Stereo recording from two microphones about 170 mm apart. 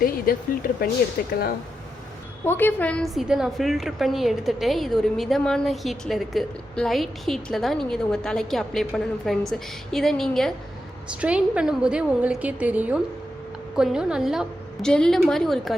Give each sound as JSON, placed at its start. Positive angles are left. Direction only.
{"t": 0.3, "sound": "speech", "side_deg": 60}
{"t": 2.4, "sound": "a woman's voice", "side_deg": 10}